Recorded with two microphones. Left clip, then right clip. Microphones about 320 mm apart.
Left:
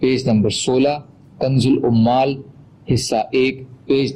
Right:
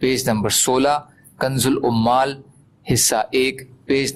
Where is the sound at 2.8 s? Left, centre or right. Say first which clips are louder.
Even; right.